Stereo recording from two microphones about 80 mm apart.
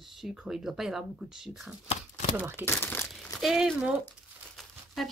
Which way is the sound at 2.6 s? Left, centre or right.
Left.